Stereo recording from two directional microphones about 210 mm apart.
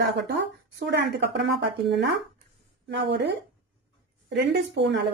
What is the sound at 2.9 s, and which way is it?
Speech, 55° right (ahead or behind).